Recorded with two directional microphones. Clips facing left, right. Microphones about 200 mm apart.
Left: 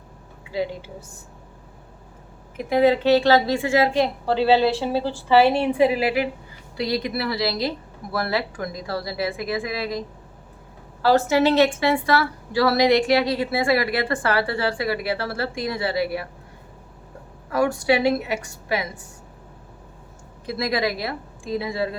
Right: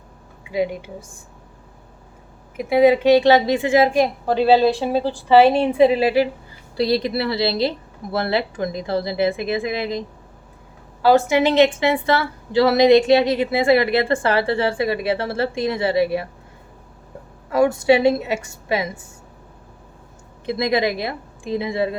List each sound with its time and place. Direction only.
0.5 s a woman's voice: 15° right (ahead or behind)
2.6 s a woman's voice: 10° right (ahead or behind)
11.0 s a woman's voice: 15° right (ahead or behind)
17.5 s a woman's voice: 20° right (ahead or behind)
20.5 s a woman's voice: 20° right (ahead or behind)